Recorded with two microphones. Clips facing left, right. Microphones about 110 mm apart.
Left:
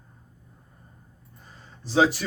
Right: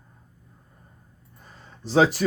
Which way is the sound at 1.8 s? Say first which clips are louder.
Right 2 dB; 50° right (ahead or behind).